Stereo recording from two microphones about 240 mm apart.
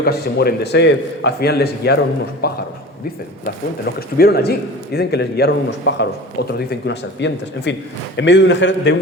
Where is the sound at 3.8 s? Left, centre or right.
Left.